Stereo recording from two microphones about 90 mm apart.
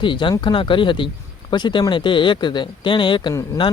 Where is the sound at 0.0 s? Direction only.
60° left (ahead or behind).